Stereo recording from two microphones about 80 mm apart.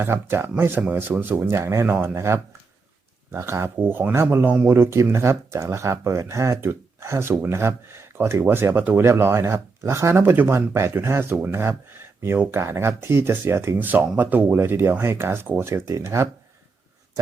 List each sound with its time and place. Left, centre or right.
0.0 s speech: right
4.7 s speech: right
11.9 s a sound: right
12.4 s speech: right